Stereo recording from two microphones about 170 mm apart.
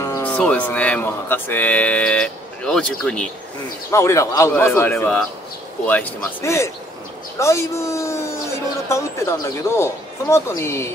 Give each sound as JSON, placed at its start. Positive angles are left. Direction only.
{"t": 0.0, "sound": "speech", "side_deg": 15}
{"t": 3.9, "sound": "speech", "side_deg": 15}